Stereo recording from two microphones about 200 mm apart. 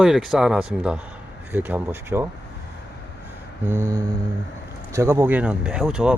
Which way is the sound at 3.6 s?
10° left (ahead or behind).